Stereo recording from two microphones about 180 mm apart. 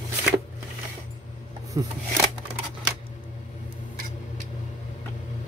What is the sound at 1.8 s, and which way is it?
Speech, 20° right (ahead or behind).